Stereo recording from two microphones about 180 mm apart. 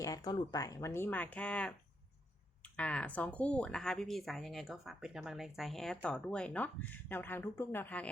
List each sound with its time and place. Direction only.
0.0 s speech: 20° left (ahead or behind)
2.7 s speech: 5° left (ahead or behind)